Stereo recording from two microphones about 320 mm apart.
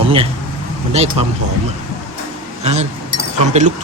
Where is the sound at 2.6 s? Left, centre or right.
Centre.